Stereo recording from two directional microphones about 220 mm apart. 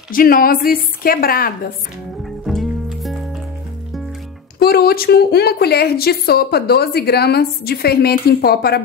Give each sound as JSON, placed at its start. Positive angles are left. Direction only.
{"t": 0.1, "sound": "a woman's voice", "side_deg": 40}
{"t": 2.4, "sound": "music", "side_deg": 0}
{"t": 4.6, "sound": "a woman's voice", "side_deg": 45}